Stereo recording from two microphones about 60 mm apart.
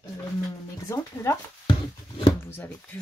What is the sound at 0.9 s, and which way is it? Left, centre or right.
Speech, left.